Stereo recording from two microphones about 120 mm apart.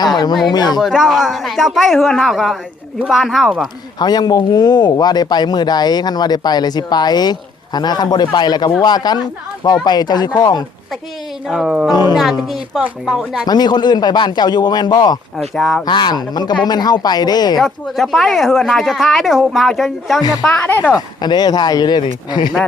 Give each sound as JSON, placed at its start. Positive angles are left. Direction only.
{"t": 0.4, "sound": "speech", "side_deg": 35}
{"t": 0.8, "sound": "a woman's voice", "side_deg": -5}
{"t": 3.9, "sound": "speech", "side_deg": 35}
{"t": 11.4, "sound": "a woman's voice", "side_deg": -5}
{"t": 11.9, "sound": "speech", "side_deg": 35}
{"t": 12.4, "sound": "a woman's voice", "side_deg": 0}
{"t": 13.4, "sound": "speech", "side_deg": 35}
{"t": 17.6, "sound": "a woman's voice", "side_deg": 0}
{"t": 20.9, "sound": "speech", "side_deg": 35}